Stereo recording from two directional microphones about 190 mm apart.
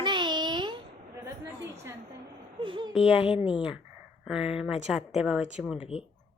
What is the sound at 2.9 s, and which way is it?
Speech, 5° right (ahead or behind).